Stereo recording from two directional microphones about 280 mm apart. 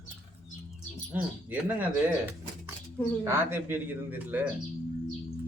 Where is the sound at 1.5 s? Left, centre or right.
Centre.